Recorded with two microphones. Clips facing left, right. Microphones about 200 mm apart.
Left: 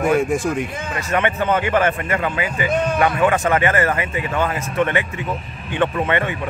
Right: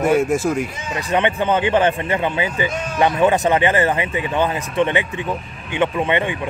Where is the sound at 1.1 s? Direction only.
20° right (ahead or behind).